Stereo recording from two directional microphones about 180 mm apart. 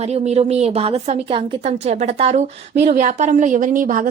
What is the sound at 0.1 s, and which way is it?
A woman's voice, 40° right (ahead or behind).